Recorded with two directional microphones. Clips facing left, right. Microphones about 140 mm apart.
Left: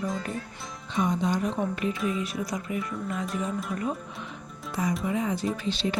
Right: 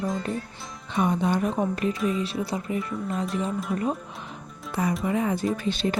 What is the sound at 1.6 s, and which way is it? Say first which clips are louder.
Speech: right 3 dB; 40° right (ahead or behind).